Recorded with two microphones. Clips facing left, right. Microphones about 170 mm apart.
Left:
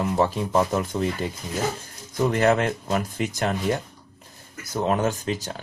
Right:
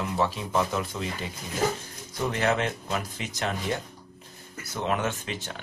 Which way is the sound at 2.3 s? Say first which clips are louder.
Left 5 dB; 50° left (ahead or behind).